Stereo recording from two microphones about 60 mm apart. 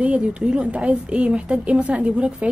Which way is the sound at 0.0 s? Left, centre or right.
Centre.